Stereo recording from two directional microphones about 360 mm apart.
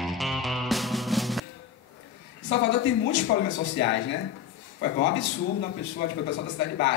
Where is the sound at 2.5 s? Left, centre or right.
Left.